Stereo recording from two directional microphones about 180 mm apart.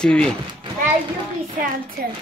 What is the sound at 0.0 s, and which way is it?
Speech, 5° left (ahead or behind).